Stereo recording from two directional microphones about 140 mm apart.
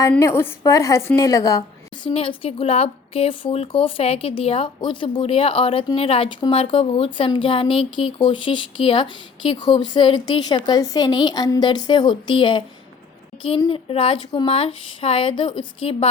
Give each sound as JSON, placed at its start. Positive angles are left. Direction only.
{"t": 0.2, "sound": "a woman's voice", "side_deg": 20}
{"t": 2.0, "sound": "speech", "side_deg": 40}
{"t": 13.7, "sound": "speech", "side_deg": 40}